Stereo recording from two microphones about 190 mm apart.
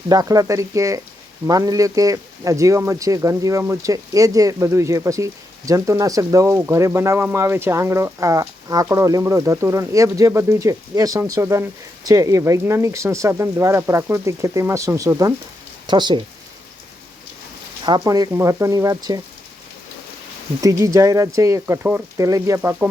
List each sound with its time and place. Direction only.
0.1 s speech: 20° right (ahead or behind)
17.8 s speech: 20° right (ahead or behind)
20.6 s speech: 15° right (ahead or behind)